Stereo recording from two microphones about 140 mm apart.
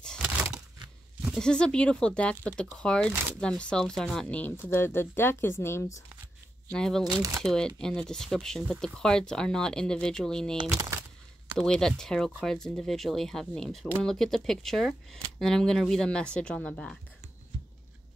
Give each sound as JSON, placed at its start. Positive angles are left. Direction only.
{"t": 0.0, "sound": "a sound", "side_deg": 5}
{"t": 1.4, "sound": "speech", "side_deg": 5}
{"t": 6.7, "sound": "speech", "side_deg": 5}
{"t": 7.1, "sound": "speech", "side_deg": -25}
{"t": 7.4, "sound": "speech", "side_deg": 5}